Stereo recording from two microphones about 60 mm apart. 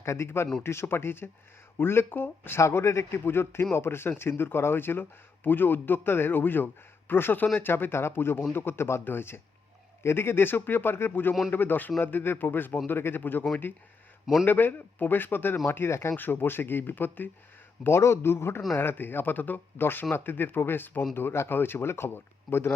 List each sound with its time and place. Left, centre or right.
0.0 s speech: left
2.6 s speech: left
14.4 s speech: left
16.1 s speech: left
17.8 s speech: left